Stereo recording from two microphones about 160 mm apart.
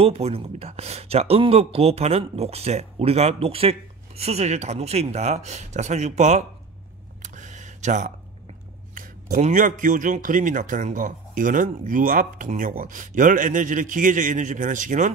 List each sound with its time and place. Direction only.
0.0 s speech: 40° right (ahead or behind)
7.2 s a sound: 50° right (ahead or behind)
8.9 s a man's voice: 55° right (ahead or behind)